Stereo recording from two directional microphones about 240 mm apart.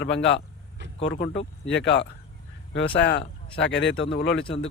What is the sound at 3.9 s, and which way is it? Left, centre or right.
Speech, left.